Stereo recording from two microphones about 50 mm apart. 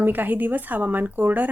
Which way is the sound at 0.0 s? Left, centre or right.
Right.